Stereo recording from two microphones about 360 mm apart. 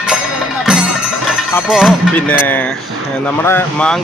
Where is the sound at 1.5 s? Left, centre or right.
Centre.